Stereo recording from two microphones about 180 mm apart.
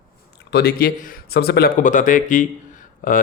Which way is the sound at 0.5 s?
60° left (ahead or behind).